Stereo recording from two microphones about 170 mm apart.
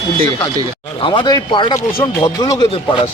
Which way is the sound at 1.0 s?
30° left (ahead or behind).